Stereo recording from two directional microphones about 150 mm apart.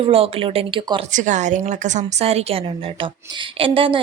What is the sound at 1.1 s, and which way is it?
A woman's voice, 55° right (ahead or behind).